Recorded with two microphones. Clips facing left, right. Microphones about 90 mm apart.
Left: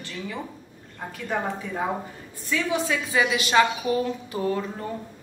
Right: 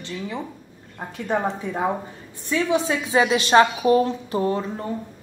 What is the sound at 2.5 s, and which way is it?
A woman's voice, 25° right (ahead or behind).